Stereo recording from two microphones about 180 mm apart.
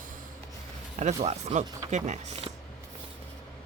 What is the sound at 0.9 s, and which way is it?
Speech, 40° right (ahead or behind).